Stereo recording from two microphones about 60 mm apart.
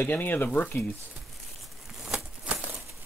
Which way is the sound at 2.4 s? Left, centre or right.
Right.